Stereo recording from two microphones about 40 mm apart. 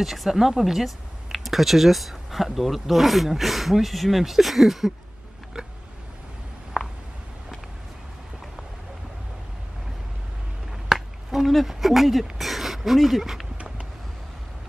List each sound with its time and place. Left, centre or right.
0.0 s speech: centre
10.9 s a sound: centre
13.6 s vehicle: right